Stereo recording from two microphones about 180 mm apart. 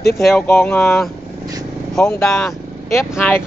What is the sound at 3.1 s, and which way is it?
Speech, 10° left (ahead or behind).